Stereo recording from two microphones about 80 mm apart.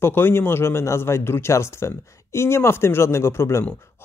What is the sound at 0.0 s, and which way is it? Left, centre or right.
Speech, left.